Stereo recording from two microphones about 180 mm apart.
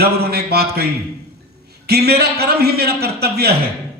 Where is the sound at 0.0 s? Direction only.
60° right (ahead or behind).